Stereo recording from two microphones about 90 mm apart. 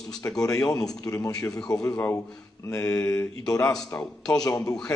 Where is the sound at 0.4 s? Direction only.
40° left (ahead or behind).